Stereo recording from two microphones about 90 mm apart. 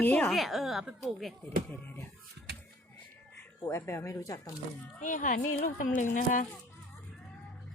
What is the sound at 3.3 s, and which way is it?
Speech, 30° left (ahead or behind).